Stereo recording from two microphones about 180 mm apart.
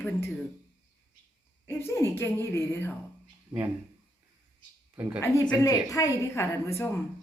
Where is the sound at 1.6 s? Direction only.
15° left (ahead or behind).